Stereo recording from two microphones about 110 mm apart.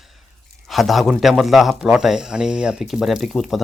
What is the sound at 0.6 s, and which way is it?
Speech, centre (ahead or behind).